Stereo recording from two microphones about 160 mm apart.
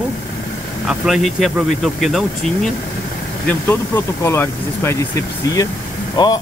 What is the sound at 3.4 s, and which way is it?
Speech, 15° left (ahead or behind).